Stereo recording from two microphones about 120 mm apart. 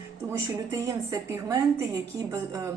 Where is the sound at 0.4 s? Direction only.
30° right (ahead or behind).